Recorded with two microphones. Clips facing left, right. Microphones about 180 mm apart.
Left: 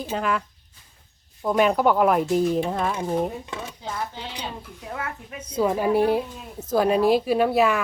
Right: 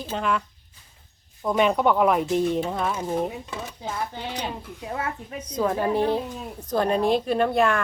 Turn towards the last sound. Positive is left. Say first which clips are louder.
# left 1 dB
turn(degrees=5)  # may be behind; listen again after turning